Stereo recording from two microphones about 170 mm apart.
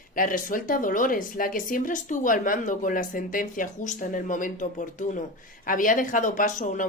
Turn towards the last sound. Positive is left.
turn(degrees=50)  # may be behind; listen again after turning